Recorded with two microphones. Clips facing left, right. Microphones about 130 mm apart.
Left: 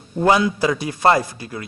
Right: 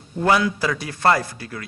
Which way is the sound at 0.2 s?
20° left (ahead or behind).